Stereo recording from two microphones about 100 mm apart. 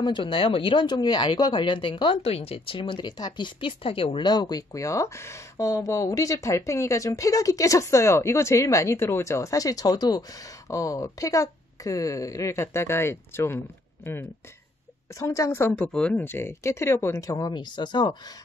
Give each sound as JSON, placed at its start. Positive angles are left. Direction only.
{"t": 0.0, "sound": "speech", "side_deg": 55}
{"t": 15.1, "sound": "speech", "side_deg": 30}
{"t": 15.7, "sound": "speech", "side_deg": 10}